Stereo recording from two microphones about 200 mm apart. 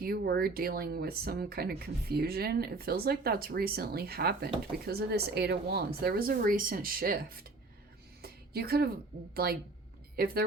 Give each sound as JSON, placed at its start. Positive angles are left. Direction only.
{"t": 0.0, "sound": "speech", "side_deg": -50}
{"t": 8.2, "sound": "a sound", "side_deg": -50}
{"t": 9.3, "sound": "speech", "side_deg": -50}